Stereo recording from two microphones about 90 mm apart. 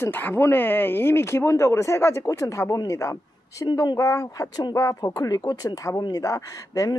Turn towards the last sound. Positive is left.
turn(degrees=40)  # may be behind; listen again after turning